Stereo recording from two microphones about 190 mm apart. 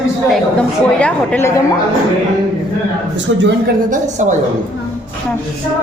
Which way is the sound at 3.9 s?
40° right (ahead or behind).